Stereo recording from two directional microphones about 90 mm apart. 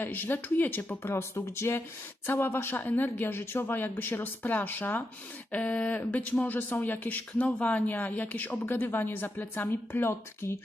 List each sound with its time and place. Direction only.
0.0 s speech: 20° left (ahead or behind)